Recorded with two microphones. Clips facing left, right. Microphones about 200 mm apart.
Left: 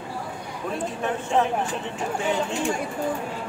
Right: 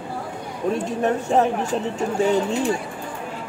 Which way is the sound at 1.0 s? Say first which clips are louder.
Right 4 dB; 40° right (ahead or behind).